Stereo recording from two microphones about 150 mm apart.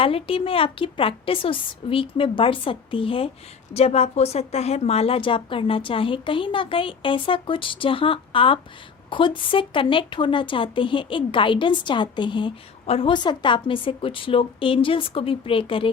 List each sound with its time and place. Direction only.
0.0 s a woman's voice: 40° left (ahead or behind)